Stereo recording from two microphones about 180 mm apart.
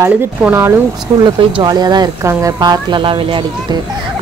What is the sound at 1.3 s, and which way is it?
Speech, 25° right (ahead or behind).